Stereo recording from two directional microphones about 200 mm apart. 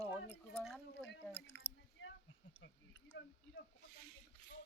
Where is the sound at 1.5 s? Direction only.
65° left (ahead or behind).